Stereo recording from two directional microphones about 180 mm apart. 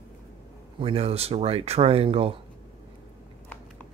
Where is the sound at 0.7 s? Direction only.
30° right (ahead or behind).